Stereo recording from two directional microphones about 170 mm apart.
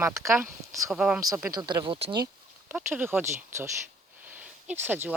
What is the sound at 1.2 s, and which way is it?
Speech, 20° right (ahead or behind).